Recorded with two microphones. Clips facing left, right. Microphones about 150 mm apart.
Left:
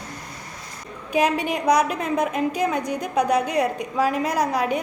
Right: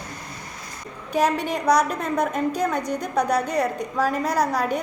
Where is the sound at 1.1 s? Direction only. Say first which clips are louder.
Left 1 dB; 10° left (ahead or behind).